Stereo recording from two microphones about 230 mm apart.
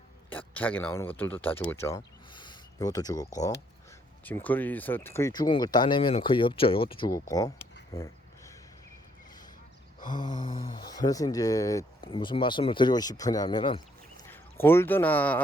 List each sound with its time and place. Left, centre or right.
0.3 s speech: centre
10.0 s mantra: left
10.4 s speech: centre